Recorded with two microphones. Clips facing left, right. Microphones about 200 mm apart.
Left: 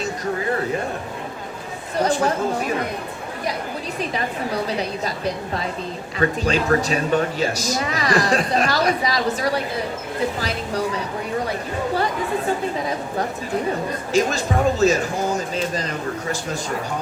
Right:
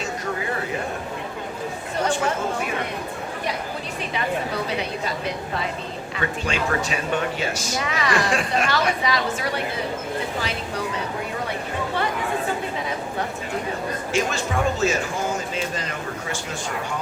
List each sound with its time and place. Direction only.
2.0 s speech: 35° left (ahead or behind)
4.8 s speech: 40° left (ahead or behind)
14.1 s speech: 35° left (ahead or behind)